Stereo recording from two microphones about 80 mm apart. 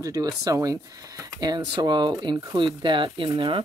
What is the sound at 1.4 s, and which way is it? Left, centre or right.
Speech, right.